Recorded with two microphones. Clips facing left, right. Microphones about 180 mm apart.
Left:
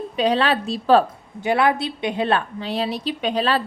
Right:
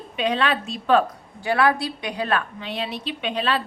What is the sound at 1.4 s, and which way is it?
A woman's voice, 20° left (ahead or behind).